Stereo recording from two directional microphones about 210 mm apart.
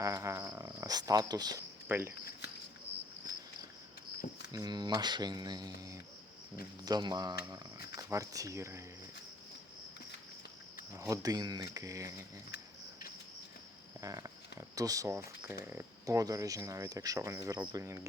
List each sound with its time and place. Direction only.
0.0 s speech: 15° right (ahead or behind)
4.5 s speech: 20° right (ahead or behind)
10.9 s speech: 15° right (ahead or behind)
14.0 s a sound: 15° right (ahead or behind)
14.8 s speech: 15° right (ahead or behind)